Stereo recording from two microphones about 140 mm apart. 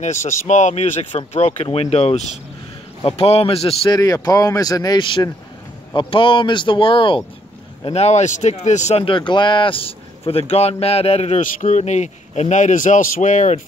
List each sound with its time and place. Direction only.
0.0 s speech: 60° left (ahead or behind); by 3.9 s 40° left (ahead or behind)
3.9 s speech: 30° left (ahead or behind)
7.9 s speech: 55° left (ahead or behind)
9.0 s speech: 35° left (ahead or behind); by 13.6 s 60° left (ahead or behind)